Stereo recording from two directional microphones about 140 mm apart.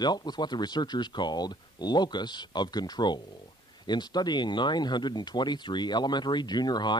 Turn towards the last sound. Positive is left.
turn(degrees=30)  # may be behind; listen again after turning